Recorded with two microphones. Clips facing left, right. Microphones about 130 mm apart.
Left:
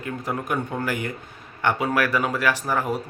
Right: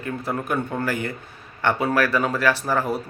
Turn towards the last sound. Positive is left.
turn(degrees=15)  # may be behind; listen again after turning